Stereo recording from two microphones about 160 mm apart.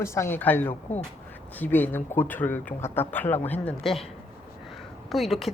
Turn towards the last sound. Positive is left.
turn(degrees=0)  # may be behind; listen again after turning